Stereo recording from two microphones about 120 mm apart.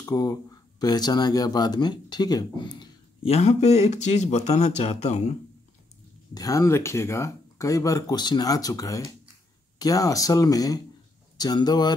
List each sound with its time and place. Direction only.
0.0 s speech: 30° left (ahead or behind)
3.3 s speech: 65° left (ahead or behind)
6.3 s speech: 30° left (ahead or behind)